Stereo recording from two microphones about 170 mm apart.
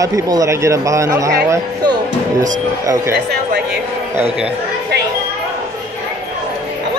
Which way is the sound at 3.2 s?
70° right (ahead or behind).